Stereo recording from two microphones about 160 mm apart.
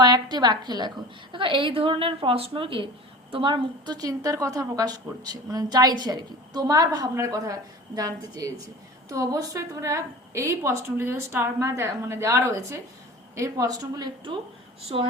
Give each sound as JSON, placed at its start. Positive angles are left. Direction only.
{"t": 0.0, "sound": "a woman's voice", "side_deg": -25}